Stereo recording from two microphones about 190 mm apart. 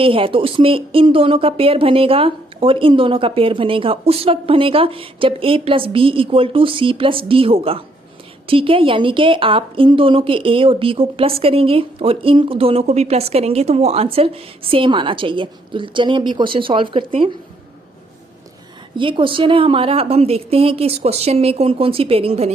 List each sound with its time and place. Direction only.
0.0 s a woman's voice: 30° right (ahead or behind)
18.9 s a woman's voice: 25° right (ahead or behind)